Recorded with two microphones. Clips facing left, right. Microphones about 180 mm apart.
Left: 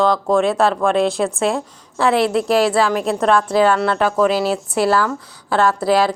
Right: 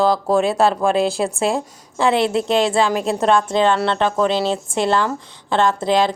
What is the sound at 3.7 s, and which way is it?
Speech, 25° right (ahead or behind).